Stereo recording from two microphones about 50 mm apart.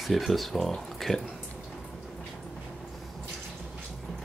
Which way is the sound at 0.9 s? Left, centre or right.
Centre.